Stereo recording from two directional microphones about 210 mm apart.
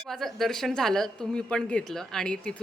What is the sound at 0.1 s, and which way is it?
A woman's voice, centre (ahead or behind).